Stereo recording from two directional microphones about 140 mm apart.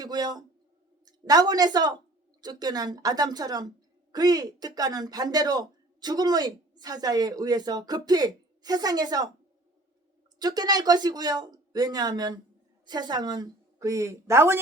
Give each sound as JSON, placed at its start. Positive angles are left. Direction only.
{"t": 0.0, "sound": "a man's voice", "side_deg": -30}
{"t": 10.3, "sound": "a woman's voice", "side_deg": -30}